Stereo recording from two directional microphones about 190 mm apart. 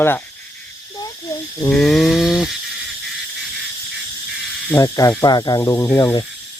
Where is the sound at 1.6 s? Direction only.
5° left (ahead or behind).